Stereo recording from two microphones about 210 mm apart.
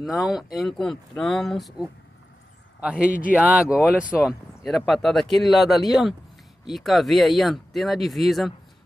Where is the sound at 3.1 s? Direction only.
40° left (ahead or behind).